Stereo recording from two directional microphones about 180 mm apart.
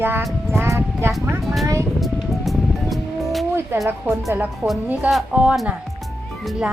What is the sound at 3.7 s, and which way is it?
A woman's voice, 15° right (ahead or behind).